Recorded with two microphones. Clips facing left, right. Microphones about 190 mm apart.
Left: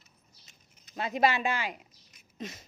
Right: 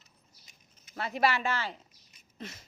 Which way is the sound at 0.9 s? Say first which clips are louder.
Left 2 dB; 20° left (ahead or behind).